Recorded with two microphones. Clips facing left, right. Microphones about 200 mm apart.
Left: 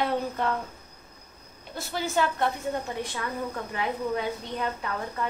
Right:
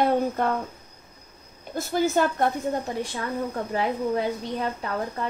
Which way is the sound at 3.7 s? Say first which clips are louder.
Right 4 dB; 35° right (ahead or behind).